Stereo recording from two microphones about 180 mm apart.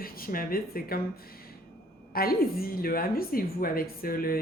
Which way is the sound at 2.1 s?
55° left (ahead or behind).